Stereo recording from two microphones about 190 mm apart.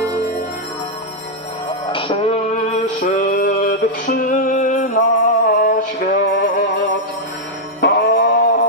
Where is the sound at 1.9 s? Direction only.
30° left (ahead or behind).